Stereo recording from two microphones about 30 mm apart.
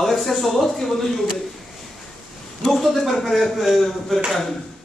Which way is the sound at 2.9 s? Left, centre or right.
Centre.